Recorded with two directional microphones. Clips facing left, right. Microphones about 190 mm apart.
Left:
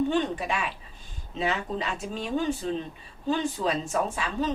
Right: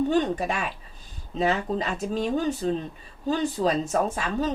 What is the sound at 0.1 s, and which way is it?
A woman's voice, 40° right (ahead or behind).